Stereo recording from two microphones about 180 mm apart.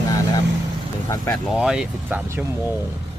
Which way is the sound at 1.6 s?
5° right (ahead or behind).